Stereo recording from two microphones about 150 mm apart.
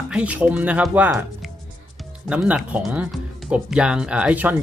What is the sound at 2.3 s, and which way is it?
Speech, 5° right (ahead or behind).